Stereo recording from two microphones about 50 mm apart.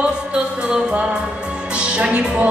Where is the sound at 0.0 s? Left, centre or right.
Centre.